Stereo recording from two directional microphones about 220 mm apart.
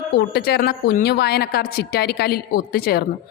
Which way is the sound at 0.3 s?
45° left (ahead or behind).